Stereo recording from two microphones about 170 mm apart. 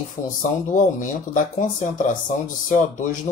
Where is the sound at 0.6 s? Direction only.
50° left (ahead or behind).